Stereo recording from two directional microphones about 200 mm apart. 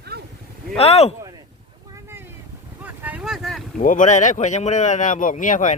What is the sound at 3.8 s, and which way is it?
Speech, 40° left (ahead or behind).